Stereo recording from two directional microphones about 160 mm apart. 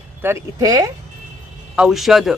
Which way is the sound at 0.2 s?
15° right (ahead or behind).